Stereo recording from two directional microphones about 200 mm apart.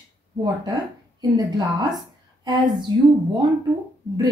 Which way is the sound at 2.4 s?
20° right (ahead or behind).